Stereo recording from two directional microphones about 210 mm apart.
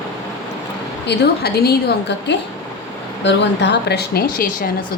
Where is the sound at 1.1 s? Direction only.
50° left (ahead or behind).